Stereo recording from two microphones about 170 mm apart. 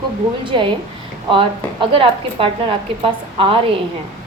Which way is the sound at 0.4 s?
30° right (ahead or behind).